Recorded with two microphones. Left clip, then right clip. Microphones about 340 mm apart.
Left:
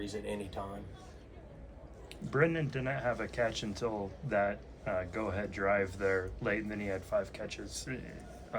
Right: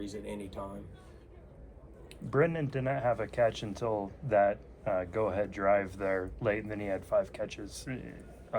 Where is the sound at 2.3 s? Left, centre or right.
Right.